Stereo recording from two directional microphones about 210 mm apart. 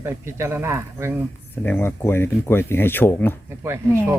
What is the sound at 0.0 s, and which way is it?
Speech, 10° right (ahead or behind).